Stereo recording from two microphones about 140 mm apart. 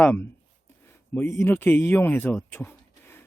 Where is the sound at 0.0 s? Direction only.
15° left (ahead or behind).